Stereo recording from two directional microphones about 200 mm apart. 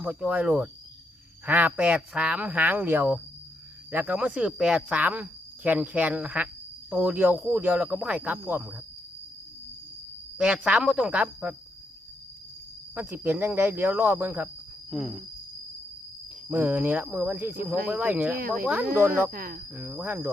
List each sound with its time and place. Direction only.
0.0 s speech: 5° right (ahead or behind)
10.3 s speech: 5° right (ahead or behind)
12.9 s speech: 10° right (ahead or behind)
16.5 s speech: 10° right (ahead or behind)
19.3 s speech: 45° right (ahead or behind)
19.7 s speech: 10° right (ahead or behind)